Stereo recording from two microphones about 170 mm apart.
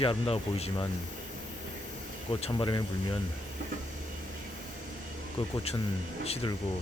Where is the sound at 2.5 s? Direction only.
25° left (ahead or behind).